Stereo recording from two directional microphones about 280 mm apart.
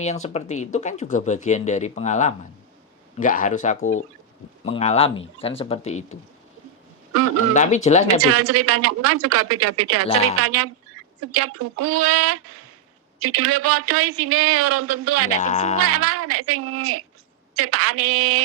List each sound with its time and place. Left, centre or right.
0.0 s speech: left
7.5 s speech: left
8.2 s speech: right
15.4 s speech: left
15.8 s speech: right